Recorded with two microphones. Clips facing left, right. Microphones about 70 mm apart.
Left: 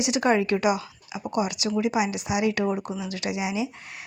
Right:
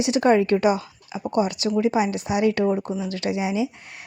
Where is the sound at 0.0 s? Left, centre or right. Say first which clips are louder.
Right 4 dB; right.